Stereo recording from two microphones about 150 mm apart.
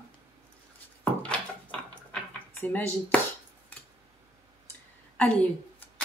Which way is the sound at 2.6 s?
10° left (ahead or behind).